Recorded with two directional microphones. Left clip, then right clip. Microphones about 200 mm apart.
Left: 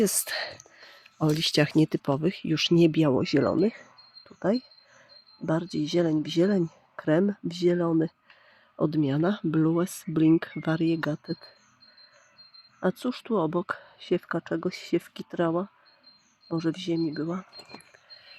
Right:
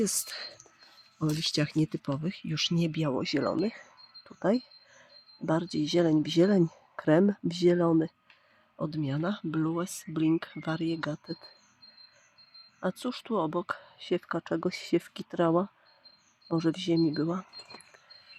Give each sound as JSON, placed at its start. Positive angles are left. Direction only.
{"t": 0.3, "sound": "speech", "side_deg": 30}
{"t": 4.2, "sound": "a sound", "side_deg": 0}
{"t": 5.5, "sound": "speech", "side_deg": 5}
{"t": 8.7, "sound": "speech", "side_deg": 20}
{"t": 12.8, "sound": "speech", "side_deg": 10}